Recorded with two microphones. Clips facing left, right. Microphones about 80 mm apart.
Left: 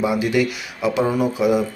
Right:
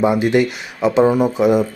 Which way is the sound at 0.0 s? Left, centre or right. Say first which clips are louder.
Right 4 dB; right.